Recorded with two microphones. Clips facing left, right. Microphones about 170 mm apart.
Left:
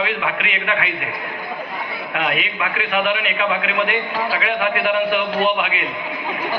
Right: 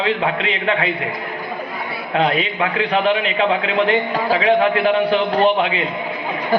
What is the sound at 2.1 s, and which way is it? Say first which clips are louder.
A man's voice: right 6 dB; 30° right (ahead or behind).